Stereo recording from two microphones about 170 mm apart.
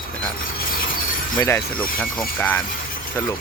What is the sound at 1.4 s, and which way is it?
Speech, 15° left (ahead or behind).